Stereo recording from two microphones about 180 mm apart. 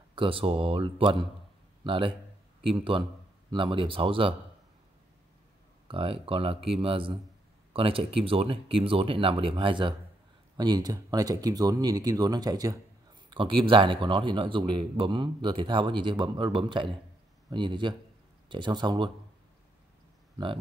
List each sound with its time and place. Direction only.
0.1 s a man's voice: 30° right (ahead or behind)
3.4 s a man's voice: 25° right (ahead or behind)
5.9 s a man's voice: 30° right (ahead or behind)